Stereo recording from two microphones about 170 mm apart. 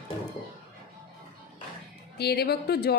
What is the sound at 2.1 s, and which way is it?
Speech, 75° left (ahead or behind).